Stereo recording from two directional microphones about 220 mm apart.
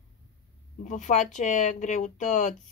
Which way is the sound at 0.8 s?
35° left (ahead or behind).